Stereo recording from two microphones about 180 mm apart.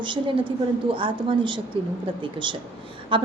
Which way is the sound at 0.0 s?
25° right (ahead or behind).